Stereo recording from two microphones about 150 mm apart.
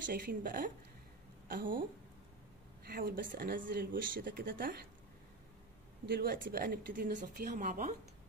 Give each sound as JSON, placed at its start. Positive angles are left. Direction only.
{"t": 0.0, "sound": "speech", "side_deg": -70}
{"t": 2.8, "sound": "speech", "side_deg": -85}
{"t": 6.0, "sound": "speech", "side_deg": -90}